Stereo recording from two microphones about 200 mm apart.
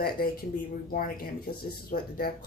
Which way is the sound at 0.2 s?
50° left (ahead or behind).